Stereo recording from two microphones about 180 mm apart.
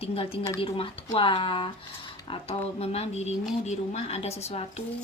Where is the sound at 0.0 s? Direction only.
35° left (ahead or behind).